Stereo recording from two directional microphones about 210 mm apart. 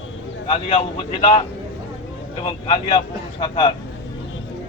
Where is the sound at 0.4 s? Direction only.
25° left (ahead or behind).